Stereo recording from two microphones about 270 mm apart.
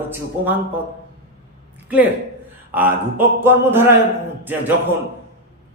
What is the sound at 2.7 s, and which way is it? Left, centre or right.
A man's voice, centre.